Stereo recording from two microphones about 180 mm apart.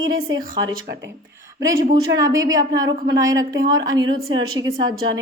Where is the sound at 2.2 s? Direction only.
20° right (ahead or behind).